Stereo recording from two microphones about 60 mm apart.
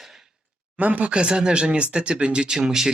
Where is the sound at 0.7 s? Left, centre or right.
Right.